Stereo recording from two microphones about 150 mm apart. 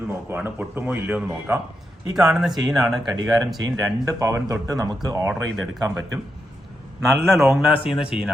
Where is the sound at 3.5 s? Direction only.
25° right (ahead or behind).